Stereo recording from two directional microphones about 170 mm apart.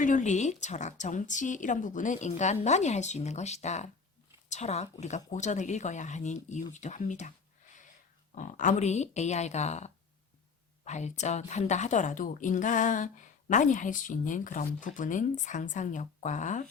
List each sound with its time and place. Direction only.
0.0 s a woman's voice: 45° left (ahead or behind)